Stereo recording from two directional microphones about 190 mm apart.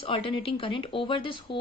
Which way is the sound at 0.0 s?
30° left (ahead or behind).